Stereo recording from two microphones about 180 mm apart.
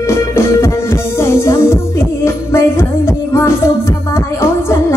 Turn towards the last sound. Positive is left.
turn(degrees=15)  # may be behind; listen again after turning